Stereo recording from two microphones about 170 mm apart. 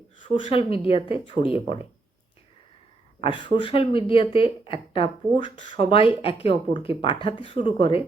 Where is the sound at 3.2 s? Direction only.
30° left (ahead or behind).